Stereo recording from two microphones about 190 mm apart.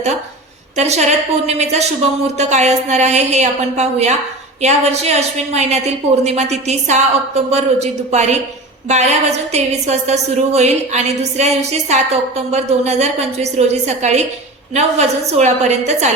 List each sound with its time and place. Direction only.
0.8 s a woman's voice: 35° right (ahead or behind)